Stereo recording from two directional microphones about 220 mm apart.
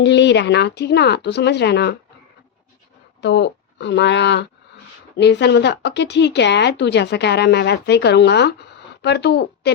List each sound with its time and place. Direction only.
0.0 s a woman's voice: 50° left (ahead or behind)
3.2 s a woman's voice: 50° left (ahead or behind)